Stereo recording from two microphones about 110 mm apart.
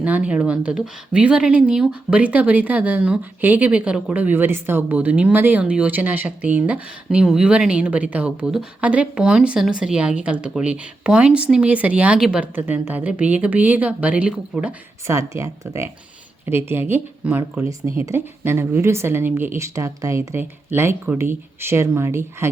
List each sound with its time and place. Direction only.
0.0 s speech: 10° right (ahead or behind)
12.5 s speech: 20° right (ahead or behind)
15.0 s a woman's voice: 30° right (ahead or behind)
17.7 s a woman's voice: 25° right (ahead or behind)